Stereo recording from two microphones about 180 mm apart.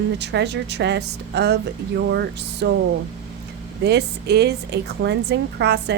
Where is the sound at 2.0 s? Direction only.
75° right (ahead or behind).